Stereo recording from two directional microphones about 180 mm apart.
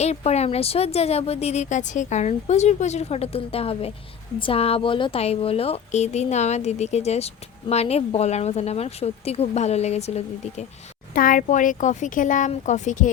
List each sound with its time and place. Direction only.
0.0 s speech: 35° left (ahead or behind)
11.1 s speech: 50° left (ahead or behind)